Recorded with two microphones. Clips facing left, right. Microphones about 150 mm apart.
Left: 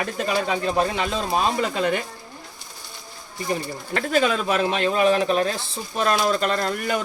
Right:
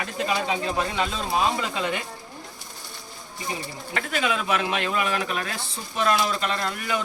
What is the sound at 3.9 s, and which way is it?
Speech, 35° left (ahead or behind).